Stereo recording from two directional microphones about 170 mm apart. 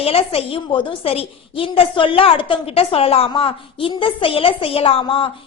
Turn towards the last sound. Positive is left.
turn(degrees=30)  # may be behind; listen again after turning